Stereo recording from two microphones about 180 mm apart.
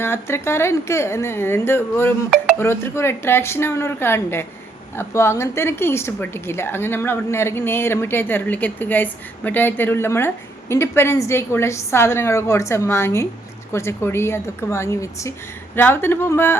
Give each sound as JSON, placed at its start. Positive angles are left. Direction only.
{"t": 0.0, "sound": "a woman's voice", "side_deg": 15}